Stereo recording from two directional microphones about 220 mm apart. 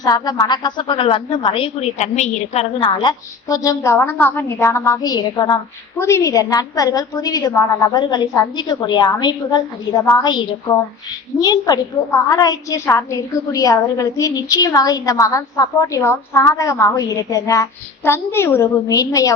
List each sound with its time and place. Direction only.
0.0 s a woman's voice: 20° left (ahead or behind)